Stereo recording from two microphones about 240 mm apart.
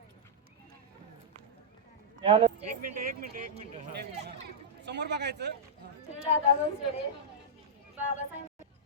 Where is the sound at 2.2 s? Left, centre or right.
Right.